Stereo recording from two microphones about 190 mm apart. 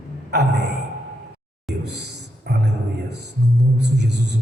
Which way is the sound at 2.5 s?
55° right (ahead or behind).